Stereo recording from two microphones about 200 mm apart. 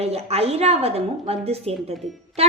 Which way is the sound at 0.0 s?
30° right (ahead or behind).